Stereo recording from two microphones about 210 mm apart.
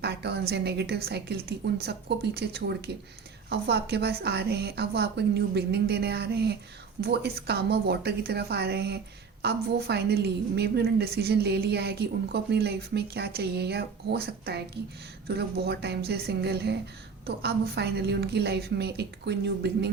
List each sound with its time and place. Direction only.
0.0 s a woman's voice: 50° right (ahead or behind)